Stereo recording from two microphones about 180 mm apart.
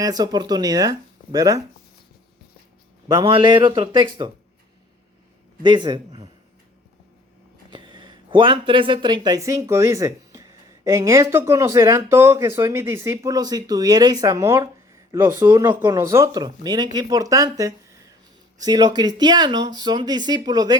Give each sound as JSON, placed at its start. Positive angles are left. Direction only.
{"t": 0.0, "sound": "speech", "side_deg": -20}
{"t": 3.1, "sound": "speech", "side_deg": -25}
{"t": 5.6, "sound": "a man's voice", "side_deg": -25}
{"t": 7.7, "sound": "speech", "side_deg": -25}